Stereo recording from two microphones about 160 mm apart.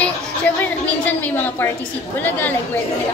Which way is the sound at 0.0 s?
10° left (ahead or behind).